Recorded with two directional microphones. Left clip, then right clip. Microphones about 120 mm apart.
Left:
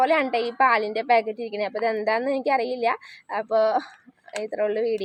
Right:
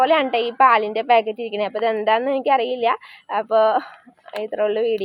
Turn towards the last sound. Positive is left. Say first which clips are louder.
# right 4 dB
turn(degrees=30)  # may be behind; listen again after turning